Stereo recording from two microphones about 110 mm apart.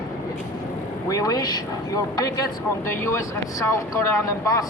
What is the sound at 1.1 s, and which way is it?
Speech, 35° left (ahead or behind).